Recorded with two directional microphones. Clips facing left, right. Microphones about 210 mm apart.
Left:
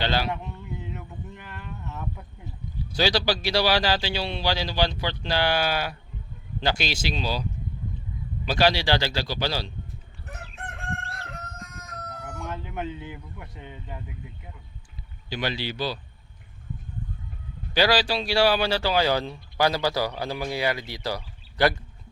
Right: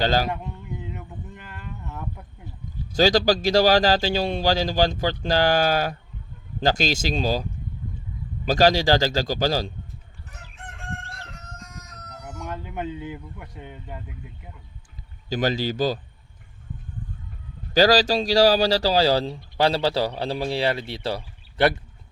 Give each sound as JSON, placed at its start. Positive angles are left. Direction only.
{"t": 0.0, "sound": "speech", "side_deg": -40}
{"t": 0.9, "sound": "a sound", "side_deg": -15}
{"t": 2.9, "sound": "a man's voice", "side_deg": -45}
{"t": 8.4, "sound": "a man's voice", "side_deg": -40}
{"t": 10.2, "sound": "chicken", "side_deg": 60}
{"t": 11.1, "sound": "crowing", "side_deg": 55}
{"t": 12.2, "sound": "speech", "side_deg": -20}
{"t": 15.3, "sound": "a man's voice", "side_deg": -45}
{"t": 17.7, "sound": "speech", "side_deg": -40}